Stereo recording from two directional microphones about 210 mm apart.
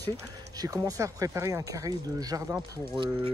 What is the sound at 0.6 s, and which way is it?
Speech, 15° right (ahead or behind).